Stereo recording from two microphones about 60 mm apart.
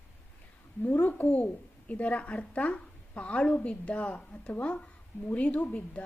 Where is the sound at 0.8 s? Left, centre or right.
Left.